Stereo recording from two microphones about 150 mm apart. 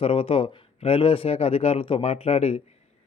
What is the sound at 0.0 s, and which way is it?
A man's voice, 40° left (ahead or behind).